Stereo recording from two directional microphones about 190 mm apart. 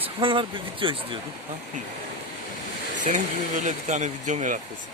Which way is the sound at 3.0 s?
40° right (ahead or behind).